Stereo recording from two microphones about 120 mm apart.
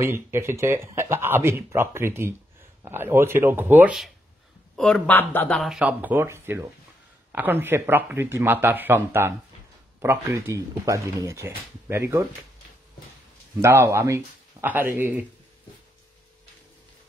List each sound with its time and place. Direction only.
0.0 s speech: 20° right (ahead or behind)
4.7 s speech: 5° left (ahead or behind)
5.6 s speech: 5° right (ahead or behind); by 12.3 s 20° right (ahead or behind)
13.6 s speech: 20° right (ahead or behind)